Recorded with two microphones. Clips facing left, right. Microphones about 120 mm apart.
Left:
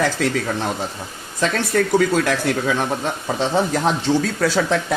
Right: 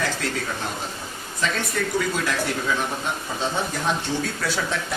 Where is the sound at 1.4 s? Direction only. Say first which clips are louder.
Left 7 dB; 70° left (ahead or behind).